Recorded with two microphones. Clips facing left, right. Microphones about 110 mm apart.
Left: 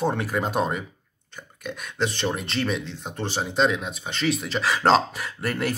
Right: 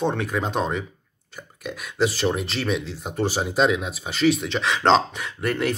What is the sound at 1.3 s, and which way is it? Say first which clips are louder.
Speech: right 1 dB; 5° right (ahead or behind).